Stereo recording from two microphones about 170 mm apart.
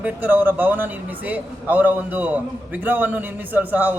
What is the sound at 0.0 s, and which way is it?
A man's voice, 10° right (ahead or behind).